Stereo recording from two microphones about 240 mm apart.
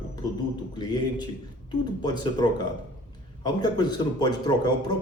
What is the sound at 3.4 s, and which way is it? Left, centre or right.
A man's voice, centre.